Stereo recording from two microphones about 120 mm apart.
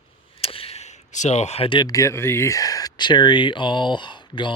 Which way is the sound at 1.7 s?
35° left (ahead or behind).